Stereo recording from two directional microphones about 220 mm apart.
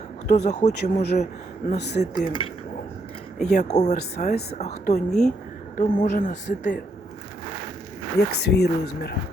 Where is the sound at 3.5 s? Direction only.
30° left (ahead or behind).